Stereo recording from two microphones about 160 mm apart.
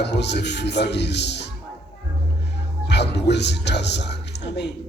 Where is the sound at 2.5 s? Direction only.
90° left.